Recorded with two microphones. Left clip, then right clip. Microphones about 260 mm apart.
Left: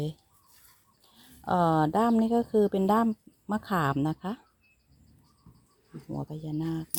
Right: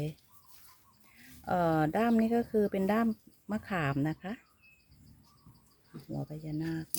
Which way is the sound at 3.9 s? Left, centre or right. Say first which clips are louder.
Left 4 dB; centre.